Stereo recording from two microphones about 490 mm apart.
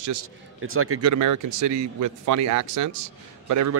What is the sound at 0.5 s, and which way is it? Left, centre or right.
Speech, right.